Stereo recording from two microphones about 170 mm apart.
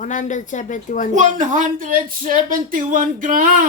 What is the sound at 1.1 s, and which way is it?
Speech, 45° right (ahead or behind).